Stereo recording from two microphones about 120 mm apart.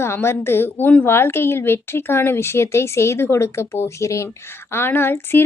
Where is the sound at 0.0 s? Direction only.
20° left (ahead or behind).